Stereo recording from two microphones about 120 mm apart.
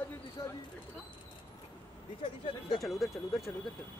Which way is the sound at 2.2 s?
50° left (ahead or behind).